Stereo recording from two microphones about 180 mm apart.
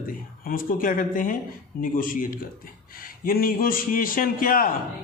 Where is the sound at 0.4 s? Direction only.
50° left (ahead or behind).